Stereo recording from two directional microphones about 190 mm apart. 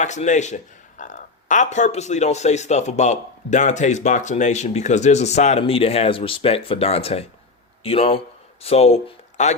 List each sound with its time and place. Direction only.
0.0 s a man's voice: 40° left (ahead or behind)